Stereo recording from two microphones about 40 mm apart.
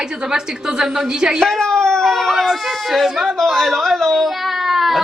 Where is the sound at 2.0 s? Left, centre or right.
Centre.